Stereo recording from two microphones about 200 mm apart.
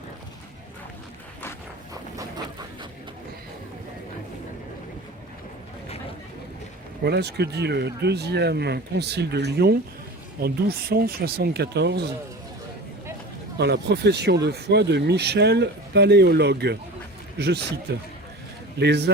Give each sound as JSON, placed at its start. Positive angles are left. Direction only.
{"t": 1.9, "sound": "a sound", "side_deg": -20}
{"t": 7.0, "sound": "speech", "side_deg": -55}
{"t": 13.6, "sound": "speech", "side_deg": -55}
{"t": 18.8, "sound": "speech", "side_deg": -55}